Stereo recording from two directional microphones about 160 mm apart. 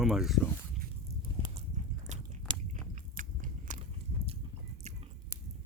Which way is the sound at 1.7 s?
50° right (ahead or behind).